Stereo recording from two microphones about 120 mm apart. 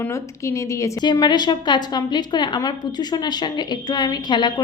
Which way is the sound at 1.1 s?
40° left (ahead or behind).